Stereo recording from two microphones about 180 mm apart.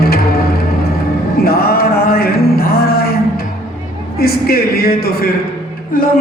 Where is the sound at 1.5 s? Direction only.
55° left (ahead or behind).